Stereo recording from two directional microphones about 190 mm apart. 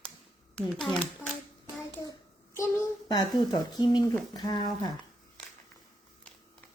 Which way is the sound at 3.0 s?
20° left (ahead or behind).